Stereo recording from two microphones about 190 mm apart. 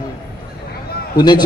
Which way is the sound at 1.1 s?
20° left (ahead or behind).